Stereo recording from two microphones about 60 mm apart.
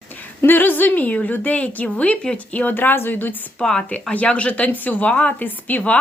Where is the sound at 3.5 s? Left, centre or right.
Centre.